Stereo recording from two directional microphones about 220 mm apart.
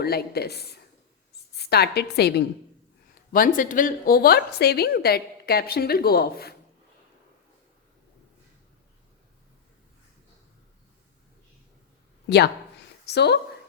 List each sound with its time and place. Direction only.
0.0 s a woman's voice: 45° left (ahead or behind)
13.1 s a woman's voice: 50° left (ahead or behind)